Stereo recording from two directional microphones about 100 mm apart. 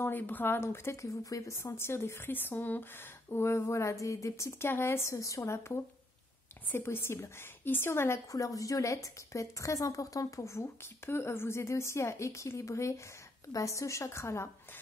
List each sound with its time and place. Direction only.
0.0 s a woman's voice: 20° left (ahead or behind)